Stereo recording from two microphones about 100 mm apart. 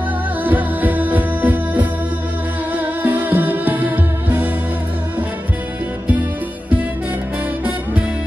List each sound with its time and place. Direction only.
0.4 s music: 15° right (ahead or behind)